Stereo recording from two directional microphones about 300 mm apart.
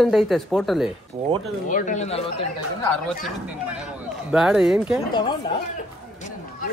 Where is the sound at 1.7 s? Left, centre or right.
Left.